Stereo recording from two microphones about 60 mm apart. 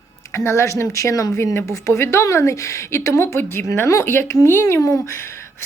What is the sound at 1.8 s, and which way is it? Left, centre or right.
Speech, left.